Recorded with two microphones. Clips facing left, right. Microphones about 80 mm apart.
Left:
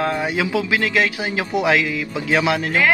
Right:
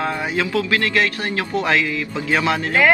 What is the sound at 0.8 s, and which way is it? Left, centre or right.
Speech, centre.